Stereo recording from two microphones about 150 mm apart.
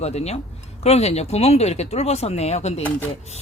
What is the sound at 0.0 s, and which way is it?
Speech, 45° left (ahead or behind).